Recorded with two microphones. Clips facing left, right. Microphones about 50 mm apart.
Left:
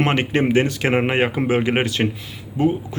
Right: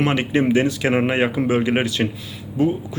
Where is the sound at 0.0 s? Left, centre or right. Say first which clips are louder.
Even; left.